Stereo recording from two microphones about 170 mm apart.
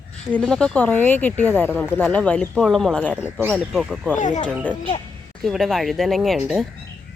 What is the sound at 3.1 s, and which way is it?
Speech, 5° right (ahead or behind).